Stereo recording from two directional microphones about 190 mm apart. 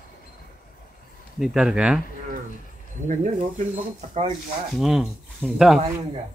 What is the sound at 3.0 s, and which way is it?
Speech, 40° right (ahead or behind).